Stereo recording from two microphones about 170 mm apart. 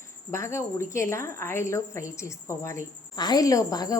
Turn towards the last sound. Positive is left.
turn(degrees=20)  # may be behind; listen again after turning